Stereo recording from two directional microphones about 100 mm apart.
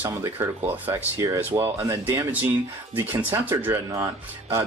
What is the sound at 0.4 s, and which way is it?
Speech, 20° right (ahead or behind).